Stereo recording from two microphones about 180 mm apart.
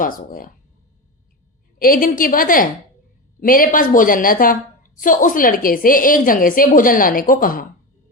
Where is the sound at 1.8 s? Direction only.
50° left (ahead or behind).